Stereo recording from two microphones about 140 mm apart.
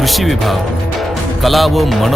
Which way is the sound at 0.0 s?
Centre (ahead or behind).